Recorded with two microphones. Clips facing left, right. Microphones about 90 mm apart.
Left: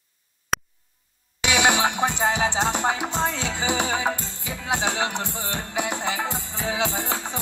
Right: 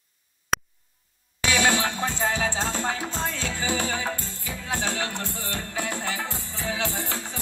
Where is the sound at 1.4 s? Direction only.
20° left (ahead or behind).